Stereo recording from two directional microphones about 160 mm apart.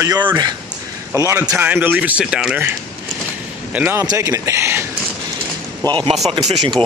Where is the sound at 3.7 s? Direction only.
15° right (ahead or behind).